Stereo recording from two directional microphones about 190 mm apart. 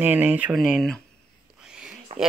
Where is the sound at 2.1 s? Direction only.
30° right (ahead or behind).